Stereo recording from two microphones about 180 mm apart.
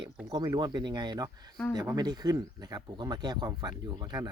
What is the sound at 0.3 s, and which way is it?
Speech, 20° right (ahead or behind).